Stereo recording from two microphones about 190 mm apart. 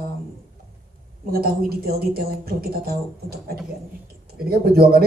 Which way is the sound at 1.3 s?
55° right (ahead or behind).